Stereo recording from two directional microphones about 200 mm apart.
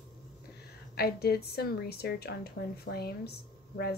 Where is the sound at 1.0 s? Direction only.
50° left (ahead or behind).